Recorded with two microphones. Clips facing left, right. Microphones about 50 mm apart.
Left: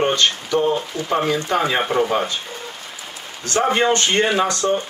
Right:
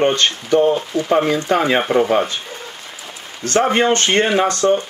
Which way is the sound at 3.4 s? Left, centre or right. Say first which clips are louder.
Right 3 dB; right.